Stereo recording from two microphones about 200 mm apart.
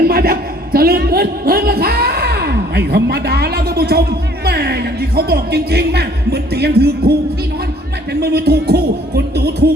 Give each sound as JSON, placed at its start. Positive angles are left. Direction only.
{"t": 0.0, "sound": "a man's voice", "side_deg": -50}
{"t": 8.2, "sound": "speech", "side_deg": -55}